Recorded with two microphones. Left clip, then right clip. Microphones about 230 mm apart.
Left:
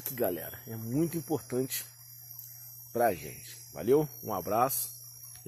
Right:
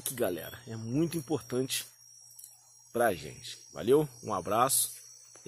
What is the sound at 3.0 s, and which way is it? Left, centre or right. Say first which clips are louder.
Speech: even; centre.